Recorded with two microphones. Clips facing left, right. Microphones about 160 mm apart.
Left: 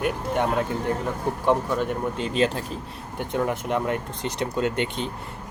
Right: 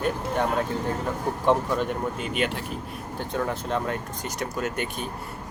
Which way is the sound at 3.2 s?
20° left (ahead or behind).